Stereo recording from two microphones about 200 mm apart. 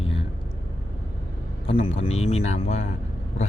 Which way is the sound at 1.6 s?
30° left (ahead or behind).